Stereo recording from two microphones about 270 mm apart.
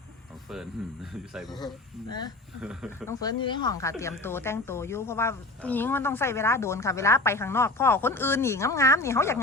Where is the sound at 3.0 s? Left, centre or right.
Centre.